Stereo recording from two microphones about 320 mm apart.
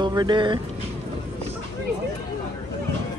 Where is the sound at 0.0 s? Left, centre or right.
Centre.